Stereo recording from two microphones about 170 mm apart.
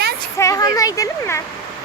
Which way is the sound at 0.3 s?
20° left (ahead or behind).